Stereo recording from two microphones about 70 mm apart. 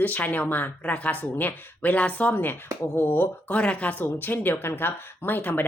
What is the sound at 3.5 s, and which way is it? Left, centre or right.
Speech, centre.